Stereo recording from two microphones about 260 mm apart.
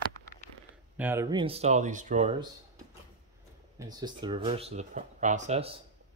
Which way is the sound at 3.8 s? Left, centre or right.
Centre.